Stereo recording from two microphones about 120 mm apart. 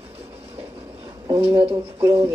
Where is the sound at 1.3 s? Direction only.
50° right (ahead or behind).